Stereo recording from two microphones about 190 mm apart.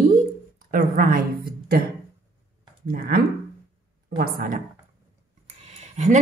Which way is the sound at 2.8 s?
50° right (ahead or behind).